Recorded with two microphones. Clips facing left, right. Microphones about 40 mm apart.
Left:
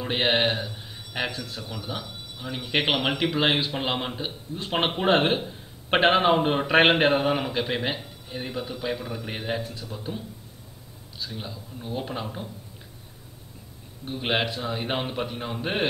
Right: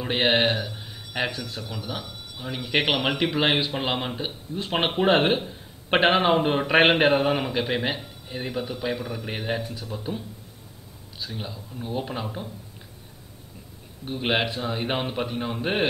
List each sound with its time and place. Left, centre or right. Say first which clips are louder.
0.0 s a man's voice: right 2 dB; centre
14.0 s a man's voice: right 1 dB; centre